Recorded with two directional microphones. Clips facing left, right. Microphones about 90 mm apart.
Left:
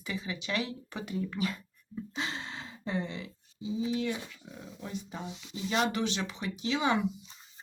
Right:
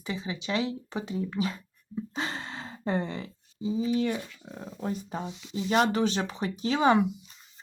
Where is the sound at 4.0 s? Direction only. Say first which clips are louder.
Right 5 dB; 40° right (ahead or behind).